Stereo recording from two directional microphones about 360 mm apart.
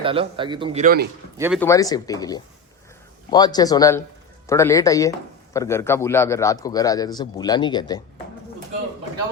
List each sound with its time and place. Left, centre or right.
0.0 s a man's voice: centre
1.4 s speech: centre
1.6 s a man's voice: centre